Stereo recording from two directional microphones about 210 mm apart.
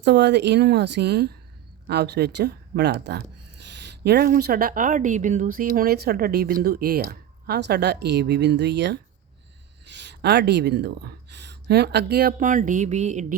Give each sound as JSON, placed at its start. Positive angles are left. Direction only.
{"t": 0.0, "sound": "speech", "side_deg": -55}